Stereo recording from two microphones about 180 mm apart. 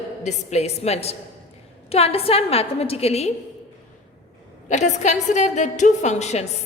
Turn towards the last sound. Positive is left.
turn(degrees=40)  # may be behind; listen again after turning